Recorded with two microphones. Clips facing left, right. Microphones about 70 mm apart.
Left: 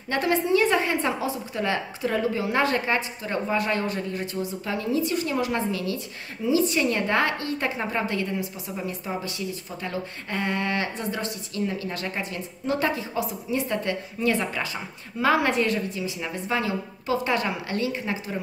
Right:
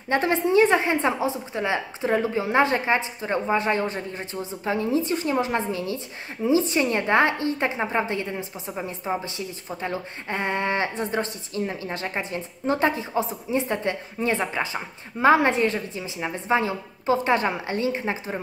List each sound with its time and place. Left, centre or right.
0.1 s a woman's voice: right